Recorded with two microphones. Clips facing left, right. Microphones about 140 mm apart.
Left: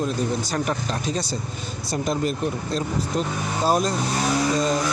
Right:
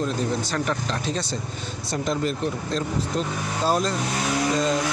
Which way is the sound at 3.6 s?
10° left (ahead or behind).